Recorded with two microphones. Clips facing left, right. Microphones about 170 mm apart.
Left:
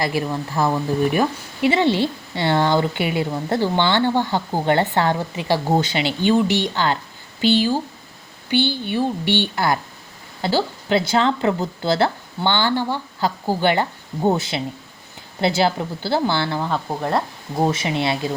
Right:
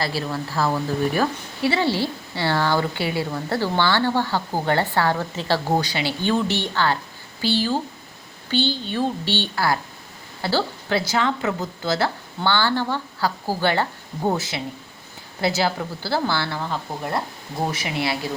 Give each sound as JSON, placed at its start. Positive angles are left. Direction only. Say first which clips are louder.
{"t": 0.0, "sound": "a woman's voice", "louder": "left 3 dB", "side_deg": 15}
{"t": 17.6, "sound": "speech", "louder": "left 5 dB", "side_deg": 25}